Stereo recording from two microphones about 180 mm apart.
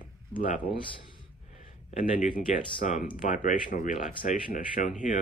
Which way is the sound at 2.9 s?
45° left (ahead or behind).